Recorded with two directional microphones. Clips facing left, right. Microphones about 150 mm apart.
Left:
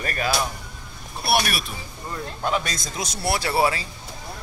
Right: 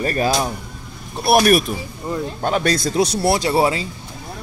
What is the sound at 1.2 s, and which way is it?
Speech, 45° right (ahead or behind).